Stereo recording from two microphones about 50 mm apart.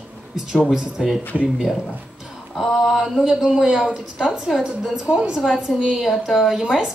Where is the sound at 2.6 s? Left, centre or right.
Centre; by 5.4 s right.